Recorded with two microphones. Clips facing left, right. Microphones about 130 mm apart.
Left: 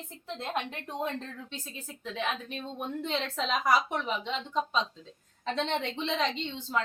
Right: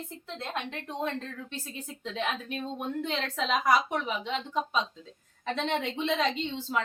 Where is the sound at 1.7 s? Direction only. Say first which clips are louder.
Right 2 dB; 15° right (ahead or behind).